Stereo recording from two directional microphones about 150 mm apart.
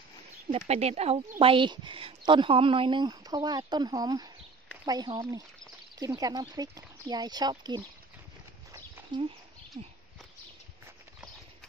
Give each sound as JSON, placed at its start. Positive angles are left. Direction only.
{"t": 0.5, "sound": "speech", "side_deg": -45}
{"t": 9.8, "sound": "speech", "side_deg": -45}